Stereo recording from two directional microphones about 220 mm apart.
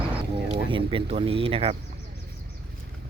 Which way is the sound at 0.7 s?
25° right (ahead or behind).